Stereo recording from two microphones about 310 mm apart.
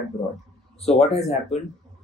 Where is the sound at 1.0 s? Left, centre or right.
Left.